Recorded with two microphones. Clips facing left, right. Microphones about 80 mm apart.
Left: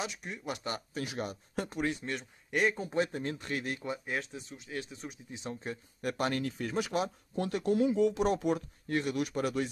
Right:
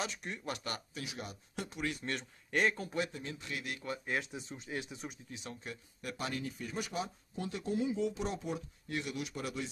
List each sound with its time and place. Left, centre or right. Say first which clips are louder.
0.0 s speech: left 1 dB; centre
0.5 s speech: left 4 dB; left
0.9 s speech: left 7 dB; left
2.0 s speech: left 2 dB; centre
2.7 s speech: left 4 dB; left
3.0 s speech: left 6 dB; left
4.0 s speech: left 1 dB; centre
4.3 s speech: even; right
4.9 s speech: left 1 dB; centre
5.3 s speech: left 6 dB; left
6.0 s speech: left 7 dB; left
6.4 s speech: left 6 dB; left
8.8 s speech: left 8 dB; left